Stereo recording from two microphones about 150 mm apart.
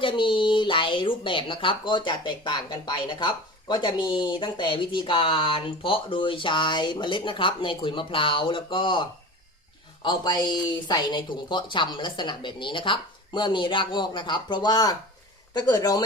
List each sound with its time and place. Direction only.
0.0 s speech: 35° left (ahead or behind)